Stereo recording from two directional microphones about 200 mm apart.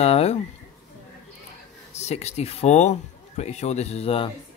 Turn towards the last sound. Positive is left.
turn(degrees=30)  # may be behind; listen again after turning